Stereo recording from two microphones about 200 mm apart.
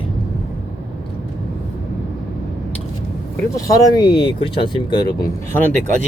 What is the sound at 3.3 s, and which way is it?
Speech, 15° left (ahead or behind).